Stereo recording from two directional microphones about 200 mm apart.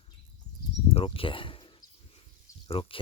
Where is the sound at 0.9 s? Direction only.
25° left (ahead or behind).